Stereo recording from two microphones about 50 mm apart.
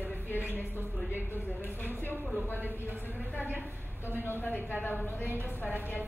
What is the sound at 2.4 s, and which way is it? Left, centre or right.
Speech, left.